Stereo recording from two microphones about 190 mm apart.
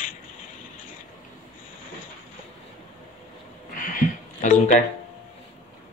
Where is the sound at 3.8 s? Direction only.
40° left (ahead or behind).